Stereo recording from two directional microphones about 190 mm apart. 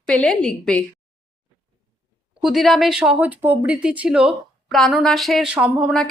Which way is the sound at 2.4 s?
Centre (ahead or behind).